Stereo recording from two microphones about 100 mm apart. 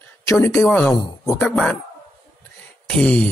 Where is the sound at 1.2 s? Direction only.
25° left (ahead or behind).